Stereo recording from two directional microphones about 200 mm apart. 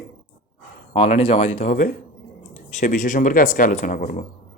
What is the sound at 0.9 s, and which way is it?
Speech, 30° left (ahead or behind).